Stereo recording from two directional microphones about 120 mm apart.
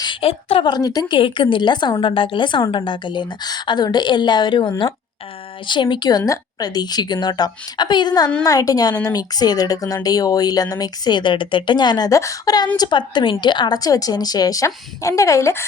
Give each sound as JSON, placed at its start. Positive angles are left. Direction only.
{"t": 0.0, "sound": "a woman's voice", "side_deg": 45}
{"t": 0.7, "sound": "speech", "side_deg": 30}